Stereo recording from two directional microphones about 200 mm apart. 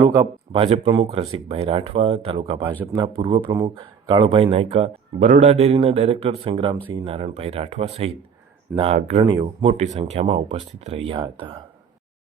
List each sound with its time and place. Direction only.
0.0 s speech: 20° right (ahead or behind)
9.2 s speech: 20° right (ahead or behind)